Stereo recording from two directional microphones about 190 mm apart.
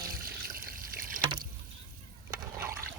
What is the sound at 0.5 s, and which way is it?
Trickle, 50° right (ahead or behind).